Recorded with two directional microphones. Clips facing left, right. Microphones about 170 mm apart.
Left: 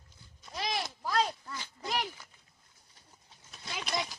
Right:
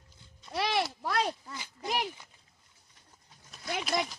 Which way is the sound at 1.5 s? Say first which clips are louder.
Right 2 dB; 15° right (ahead or behind).